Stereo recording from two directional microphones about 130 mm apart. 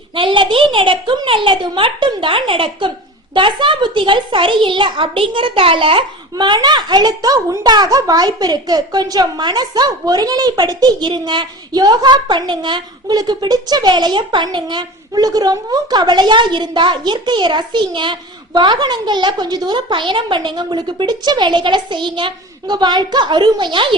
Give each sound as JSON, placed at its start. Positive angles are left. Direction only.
{"t": 0.2, "sound": "a child's voice", "side_deg": -40}